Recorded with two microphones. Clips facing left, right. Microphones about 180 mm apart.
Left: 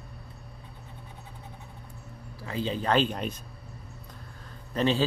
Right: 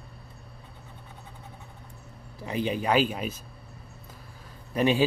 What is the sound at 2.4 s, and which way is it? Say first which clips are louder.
Speech: right 2 dB; 15° right (ahead or behind).